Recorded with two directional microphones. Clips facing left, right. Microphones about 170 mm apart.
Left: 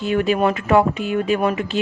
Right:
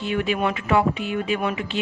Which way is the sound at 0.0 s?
40° left (ahead or behind).